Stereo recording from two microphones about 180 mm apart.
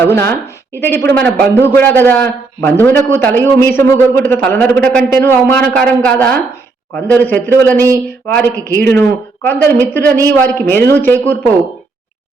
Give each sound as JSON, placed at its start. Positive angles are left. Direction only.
{"t": 0.1, "sound": "a man's voice", "side_deg": 15}
{"t": 8.5, "sound": "speech", "side_deg": 60}
{"t": 8.9, "sound": "a man's voice", "side_deg": 10}